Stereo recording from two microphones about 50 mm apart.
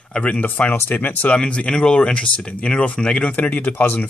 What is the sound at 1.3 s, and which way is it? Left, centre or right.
Speech, left.